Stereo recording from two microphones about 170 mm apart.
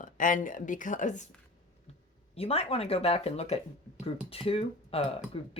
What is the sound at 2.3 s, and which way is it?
Speech, 35° left (ahead or behind).